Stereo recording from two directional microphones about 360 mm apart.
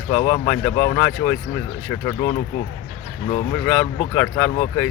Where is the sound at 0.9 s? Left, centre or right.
Centre.